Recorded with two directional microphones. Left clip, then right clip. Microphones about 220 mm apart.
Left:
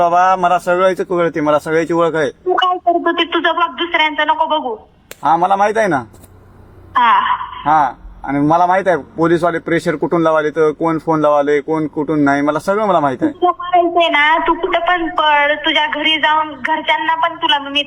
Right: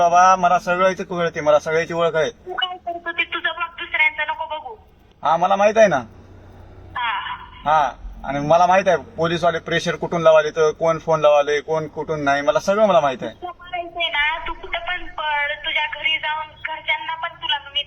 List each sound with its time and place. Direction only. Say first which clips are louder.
0.0 s a man's voice: left 2 dB; 25° left (ahead or behind)
2.6 s speech: left 12 dB; 50° left (ahead or behind)
5.2 s a man's voice: left 4 dB; 25° left (ahead or behind)
6.9 s a woman's voice: left 13 dB; 50° left (ahead or behind)
7.6 s a man's voice: left 3 dB; 25° left (ahead or behind)
13.4 s a man's voice: left 16 dB; 50° left (ahead or behind)